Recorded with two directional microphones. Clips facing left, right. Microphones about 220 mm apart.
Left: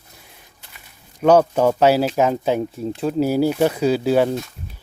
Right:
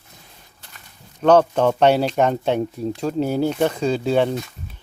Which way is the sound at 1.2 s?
10° left (ahead or behind).